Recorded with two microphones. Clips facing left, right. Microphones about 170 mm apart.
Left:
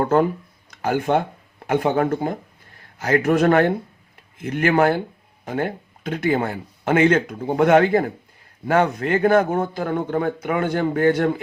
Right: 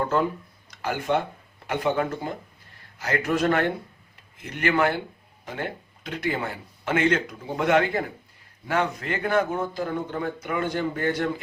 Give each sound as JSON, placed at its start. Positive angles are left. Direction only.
{"t": 0.0, "sound": "speech", "side_deg": 50}